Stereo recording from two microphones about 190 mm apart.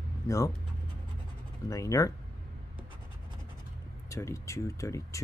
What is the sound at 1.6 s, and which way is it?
Speech, 15° left (ahead or behind).